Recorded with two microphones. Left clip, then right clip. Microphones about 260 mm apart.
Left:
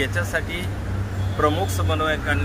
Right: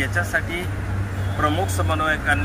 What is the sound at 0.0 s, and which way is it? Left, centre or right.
Speech, centre.